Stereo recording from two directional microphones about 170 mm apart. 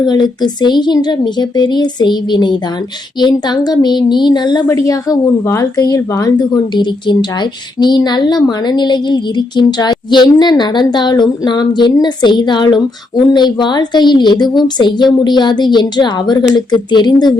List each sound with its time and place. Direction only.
0.0 s a woman's voice: 25° left (ahead or behind)